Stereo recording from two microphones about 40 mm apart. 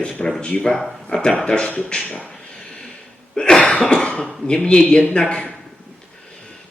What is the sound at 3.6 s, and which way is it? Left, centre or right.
Cough, left.